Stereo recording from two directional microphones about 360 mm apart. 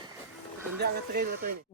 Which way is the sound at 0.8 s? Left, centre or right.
Right.